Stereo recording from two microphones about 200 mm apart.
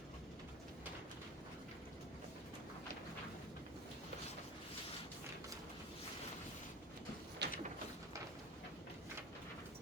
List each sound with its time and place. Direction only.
7.4 s mechanisms: 55° right (ahead or behind)